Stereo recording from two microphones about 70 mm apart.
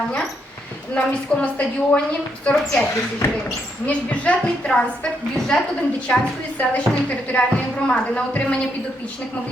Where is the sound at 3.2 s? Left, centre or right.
Left.